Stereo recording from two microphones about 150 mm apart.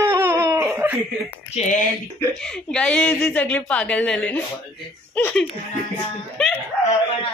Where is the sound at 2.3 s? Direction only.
5° left (ahead or behind).